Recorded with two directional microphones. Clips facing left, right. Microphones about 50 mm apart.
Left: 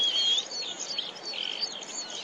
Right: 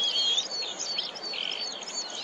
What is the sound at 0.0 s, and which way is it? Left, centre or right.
Bird, left.